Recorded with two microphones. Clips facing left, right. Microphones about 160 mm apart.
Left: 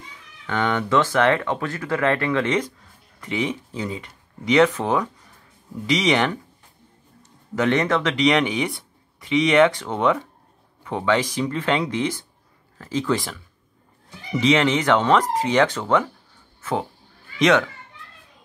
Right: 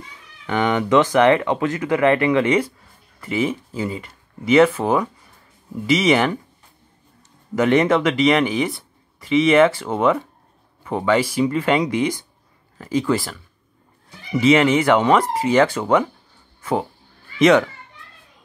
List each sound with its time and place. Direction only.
0.5 s speech: 15° right (ahead or behind)
7.5 s speech: 10° right (ahead or behind)
8.1 s speech: 5° right (ahead or behind)
17.4 s speech: 10° right (ahead or behind)